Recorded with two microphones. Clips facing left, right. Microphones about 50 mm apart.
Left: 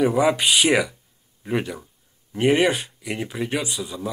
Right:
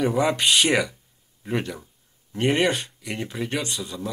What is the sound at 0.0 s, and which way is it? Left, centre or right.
Speech, centre.